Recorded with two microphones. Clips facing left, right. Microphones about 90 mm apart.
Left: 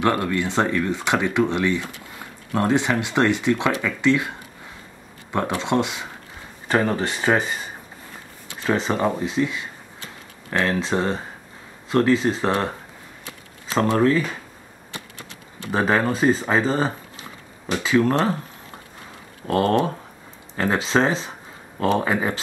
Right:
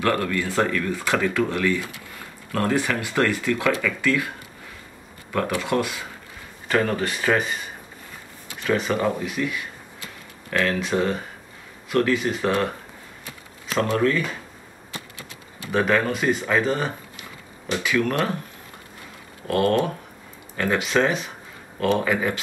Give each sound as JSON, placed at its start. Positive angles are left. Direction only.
{"t": 0.0, "sound": "speech", "side_deg": 20}
{"t": 5.3, "sound": "speech", "side_deg": 25}
{"t": 15.7, "sound": "speech", "side_deg": 30}
{"t": 19.4, "sound": "speech", "side_deg": 30}